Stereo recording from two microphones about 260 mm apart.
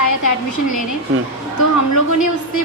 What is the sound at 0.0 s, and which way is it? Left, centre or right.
A woman's voice, left.